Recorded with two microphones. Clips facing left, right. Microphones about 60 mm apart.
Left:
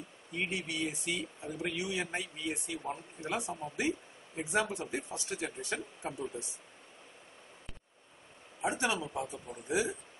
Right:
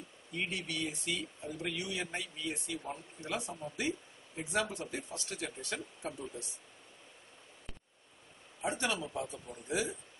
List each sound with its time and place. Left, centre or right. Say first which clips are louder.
0.4 s speech: left 2 dB; centre
8.5 s speech: left 2 dB; centre